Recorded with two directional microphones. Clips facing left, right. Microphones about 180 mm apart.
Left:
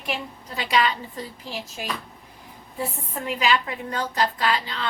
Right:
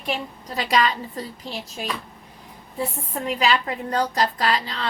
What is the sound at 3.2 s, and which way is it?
A woman's voice, 35° right (ahead or behind).